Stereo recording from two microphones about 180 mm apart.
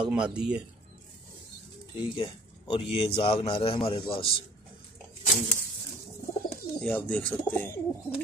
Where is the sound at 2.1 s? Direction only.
30° left (ahead or behind).